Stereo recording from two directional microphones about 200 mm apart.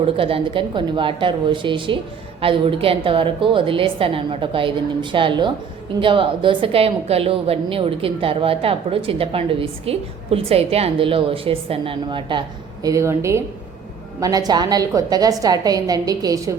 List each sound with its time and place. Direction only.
0.0 s a woman's voice: 25° right (ahead or behind)
12.8 s a woman's voice: 15° right (ahead or behind)